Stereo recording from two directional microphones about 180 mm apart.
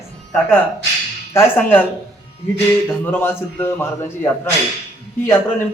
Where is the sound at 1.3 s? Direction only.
10° left (ahead or behind).